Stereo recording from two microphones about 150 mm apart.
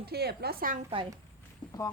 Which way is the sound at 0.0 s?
90° right.